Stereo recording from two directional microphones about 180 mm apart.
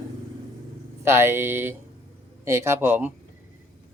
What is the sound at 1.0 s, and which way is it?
Speech, 15° right (ahead or behind).